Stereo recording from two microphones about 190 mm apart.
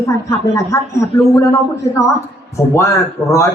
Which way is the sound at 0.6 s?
15° left (ahead or behind).